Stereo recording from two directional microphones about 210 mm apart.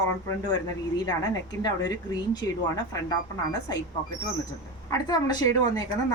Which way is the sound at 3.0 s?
15° left (ahead or behind).